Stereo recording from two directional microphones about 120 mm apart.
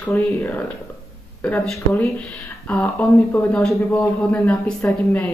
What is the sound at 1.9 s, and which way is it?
Speech, 10° left (ahead or behind).